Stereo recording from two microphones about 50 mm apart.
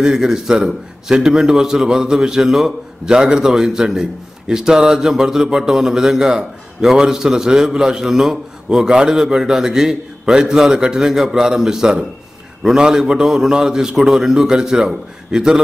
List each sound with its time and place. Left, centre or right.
0.0 s a man's voice: centre